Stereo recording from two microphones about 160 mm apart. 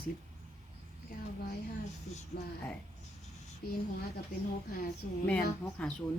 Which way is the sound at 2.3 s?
70° left (ahead or behind).